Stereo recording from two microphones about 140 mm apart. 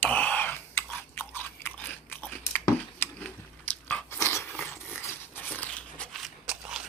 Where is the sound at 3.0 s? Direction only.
15° left (ahead or behind).